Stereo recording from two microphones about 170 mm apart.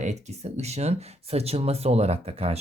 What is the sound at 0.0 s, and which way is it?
Speech, 40° right (ahead or behind).